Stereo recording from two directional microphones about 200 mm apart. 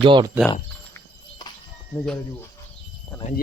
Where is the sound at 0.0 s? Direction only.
25° right (ahead or behind).